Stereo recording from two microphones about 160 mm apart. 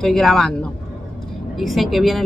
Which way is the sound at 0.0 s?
5° left (ahead or behind).